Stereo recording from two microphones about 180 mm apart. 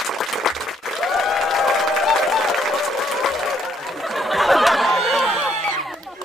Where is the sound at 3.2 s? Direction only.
Centre (ahead or behind).